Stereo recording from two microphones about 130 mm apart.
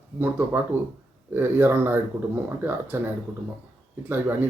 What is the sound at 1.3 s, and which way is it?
Speech, 15° right (ahead or behind).